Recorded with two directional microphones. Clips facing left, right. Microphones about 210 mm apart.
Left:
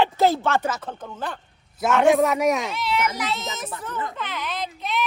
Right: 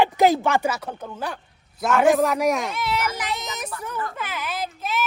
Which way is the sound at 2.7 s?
50° right (ahead or behind).